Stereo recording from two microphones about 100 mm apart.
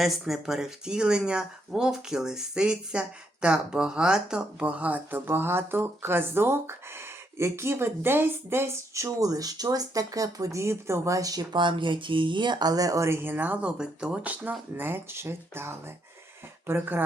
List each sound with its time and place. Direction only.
0.0 s speech: centre (ahead or behind); by 17.0 s 20° right (ahead or behind)